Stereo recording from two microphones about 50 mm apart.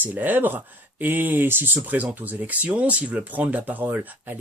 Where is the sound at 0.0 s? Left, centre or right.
Right.